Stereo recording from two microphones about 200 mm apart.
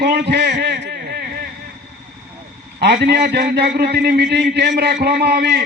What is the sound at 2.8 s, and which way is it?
A man's voice, 55° right (ahead or behind).